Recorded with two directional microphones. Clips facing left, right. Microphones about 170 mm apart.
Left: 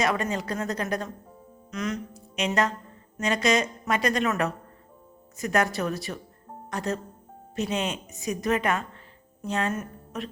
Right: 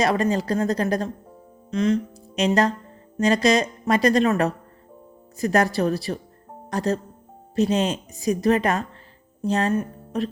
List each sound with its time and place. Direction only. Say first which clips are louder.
0.0 s speech: right 5 dB; 35° right (ahead or behind)
1.7 s music: right 9 dB; 30° right (ahead or behind)
3.2 s speech: right 5 dB; 35° right (ahead or behind)